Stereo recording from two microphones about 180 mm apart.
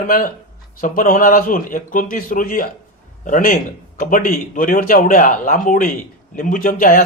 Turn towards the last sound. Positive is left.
turn(degrees=50)  # may be behind; listen again after turning